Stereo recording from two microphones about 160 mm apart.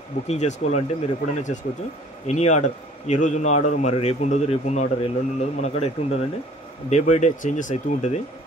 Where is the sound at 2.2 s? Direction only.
45° left (ahead or behind).